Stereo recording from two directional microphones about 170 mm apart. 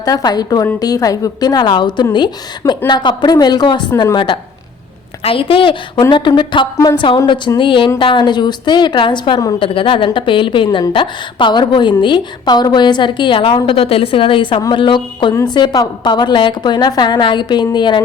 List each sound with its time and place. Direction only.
0.0 s a woman's voice: 20° left (ahead or behind)